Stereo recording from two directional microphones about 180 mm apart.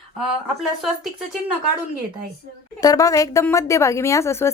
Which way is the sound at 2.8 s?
20° left (ahead or behind).